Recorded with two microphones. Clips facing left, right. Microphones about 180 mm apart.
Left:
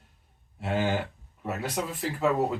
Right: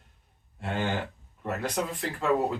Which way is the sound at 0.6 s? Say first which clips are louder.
Left 3 dB; 5° left (ahead or behind).